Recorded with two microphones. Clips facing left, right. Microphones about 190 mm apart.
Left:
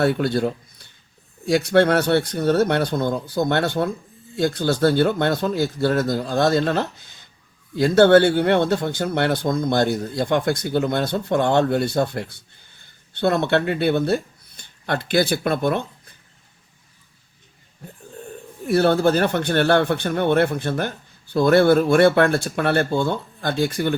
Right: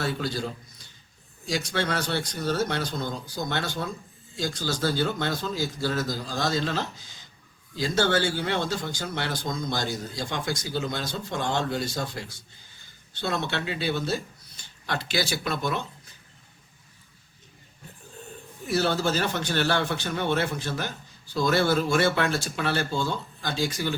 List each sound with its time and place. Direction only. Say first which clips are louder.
0.0 s a man's voice: left 10 dB; 60° left (ahead or behind)
18.6 s a man's voice: left 8 dB; 55° left (ahead or behind)